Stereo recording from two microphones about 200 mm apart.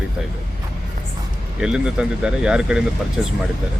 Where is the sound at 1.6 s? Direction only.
5° right (ahead or behind).